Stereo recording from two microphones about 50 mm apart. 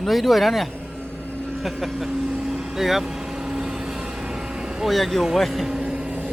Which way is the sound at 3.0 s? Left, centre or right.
Centre.